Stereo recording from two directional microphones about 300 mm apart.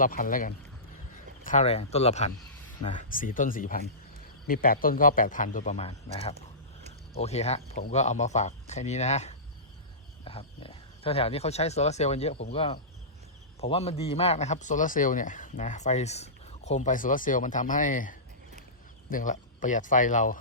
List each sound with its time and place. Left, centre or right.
0.0 s a man's voice: left